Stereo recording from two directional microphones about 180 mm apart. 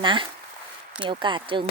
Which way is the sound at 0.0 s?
25° right (ahead or behind).